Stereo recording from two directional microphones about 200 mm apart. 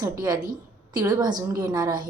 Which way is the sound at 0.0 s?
20° right (ahead or behind).